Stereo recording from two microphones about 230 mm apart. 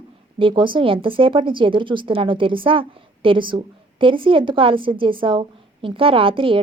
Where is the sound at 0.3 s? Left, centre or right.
Right.